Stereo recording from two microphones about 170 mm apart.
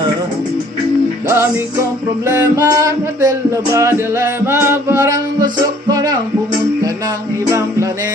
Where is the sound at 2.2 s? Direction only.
20° right (ahead or behind).